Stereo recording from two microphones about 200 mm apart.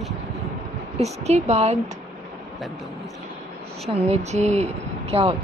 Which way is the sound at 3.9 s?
30° right (ahead or behind).